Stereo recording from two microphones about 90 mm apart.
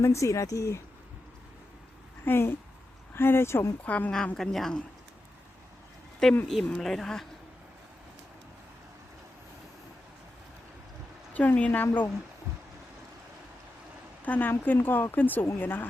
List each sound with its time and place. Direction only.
0.0 s speech: 35° left (ahead or behind)
2.2 s speech: 25° left (ahead or behind)
3.8 s a woman's voice: 15° left (ahead or behind)
6.5 s speech: centre (ahead or behind)
11.3 s speech: 15° left (ahead or behind)
14.3 s speech: 20° left (ahead or behind)